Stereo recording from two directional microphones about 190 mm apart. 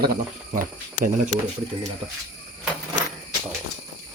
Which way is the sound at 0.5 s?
40° right (ahead or behind).